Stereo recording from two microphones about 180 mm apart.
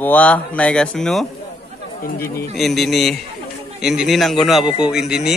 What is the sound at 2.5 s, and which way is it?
A man's voice, centre (ahead or behind).